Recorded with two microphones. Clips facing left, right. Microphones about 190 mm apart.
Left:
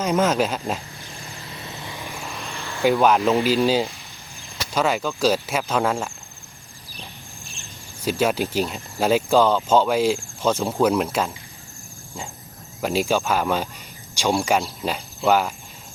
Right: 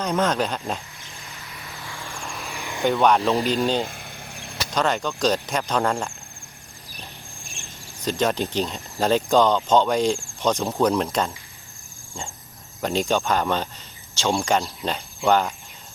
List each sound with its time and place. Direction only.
0.0 s speech: 5° left (ahead or behind)
1.3 s vehicle: 30° left (ahead or behind)
2.1 s vehicle: 5° left (ahead or behind)
2.6 s a sound: 15° right (ahead or behind)
2.8 s speech: 5° left (ahead or behind)
3.8 s cricket: 55° right (ahead or behind)
4.7 s speech: 5° left (ahead or behind)
8.0 s speech: 10° left (ahead or behind)
12.8 s speech: 5° left (ahead or behind)